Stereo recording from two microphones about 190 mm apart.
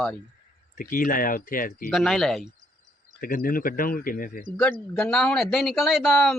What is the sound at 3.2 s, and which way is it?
Speech, 50° left (ahead or behind).